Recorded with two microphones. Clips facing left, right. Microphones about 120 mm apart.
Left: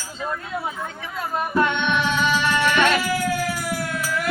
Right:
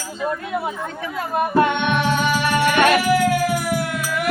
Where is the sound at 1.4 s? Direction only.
50° right (ahead or behind).